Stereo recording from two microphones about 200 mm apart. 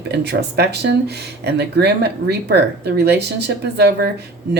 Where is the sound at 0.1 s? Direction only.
55° right (ahead or behind).